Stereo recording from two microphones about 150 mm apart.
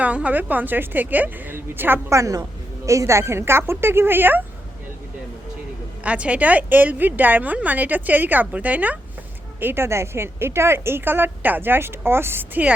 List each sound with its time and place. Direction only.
0.0 s a woman's voice: 10° right (ahead or behind)
6.0 s a woman's voice: 10° right (ahead or behind)